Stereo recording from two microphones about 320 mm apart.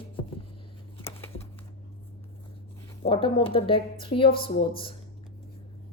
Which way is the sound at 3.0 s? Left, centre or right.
Centre.